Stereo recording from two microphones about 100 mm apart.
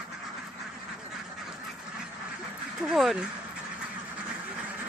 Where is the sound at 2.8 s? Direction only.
5° right (ahead or behind).